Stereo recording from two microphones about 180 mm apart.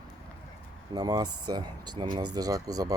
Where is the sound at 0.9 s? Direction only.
20° right (ahead or behind).